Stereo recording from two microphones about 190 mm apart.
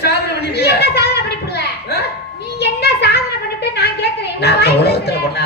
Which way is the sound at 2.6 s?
60° left (ahead or behind).